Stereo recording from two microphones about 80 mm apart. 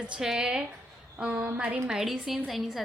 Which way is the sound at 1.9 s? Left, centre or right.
Centre.